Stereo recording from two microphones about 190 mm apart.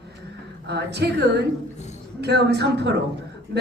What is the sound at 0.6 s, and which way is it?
A woman's voice, 60° right (ahead or behind).